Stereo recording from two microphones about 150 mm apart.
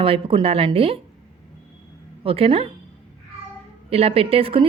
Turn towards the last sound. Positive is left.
turn(degrees=-35)  # may be behind; listen again after turning